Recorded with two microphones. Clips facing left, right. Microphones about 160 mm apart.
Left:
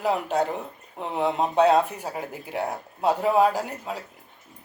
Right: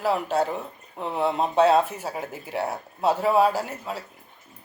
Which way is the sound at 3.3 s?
15° left (ahead or behind).